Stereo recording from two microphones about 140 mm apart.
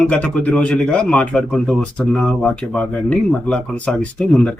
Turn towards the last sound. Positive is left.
turn(degrees=5)  # may be behind; listen again after turning